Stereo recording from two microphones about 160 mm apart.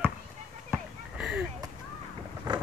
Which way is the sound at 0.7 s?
5° right (ahead or behind).